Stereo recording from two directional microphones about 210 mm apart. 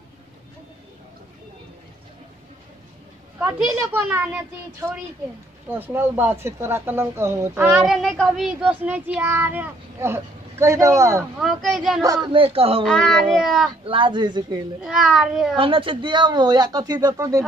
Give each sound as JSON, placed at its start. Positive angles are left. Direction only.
{"t": 3.3, "sound": "speech", "side_deg": -10}
{"t": 11.3, "sound": "speech", "side_deg": 0}
{"t": 12.0, "sound": "speech", "side_deg": -20}
{"t": 12.8, "sound": "speech", "side_deg": 0}
{"t": 13.8, "sound": "speech", "side_deg": -25}
{"t": 14.9, "sound": "speech", "side_deg": 0}
{"t": 15.5, "sound": "speech", "side_deg": -25}